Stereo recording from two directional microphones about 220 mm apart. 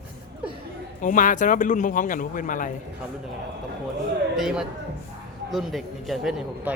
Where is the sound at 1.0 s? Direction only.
35° left (ahead or behind).